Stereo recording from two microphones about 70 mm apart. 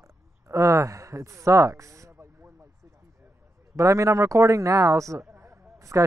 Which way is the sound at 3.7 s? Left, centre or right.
Right.